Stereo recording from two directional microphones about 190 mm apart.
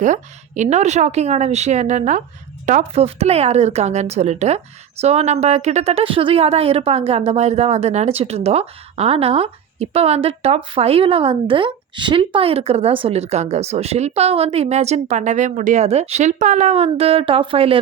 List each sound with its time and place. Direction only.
0.0 s speech: 40° right (ahead or behind)